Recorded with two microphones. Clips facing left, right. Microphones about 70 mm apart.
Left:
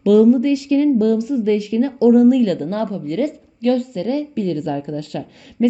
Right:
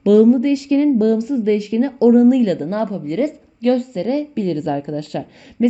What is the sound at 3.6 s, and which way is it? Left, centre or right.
A woman's voice, right.